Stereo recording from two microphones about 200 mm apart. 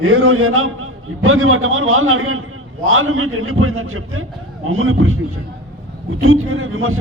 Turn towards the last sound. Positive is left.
turn(degrees=-90)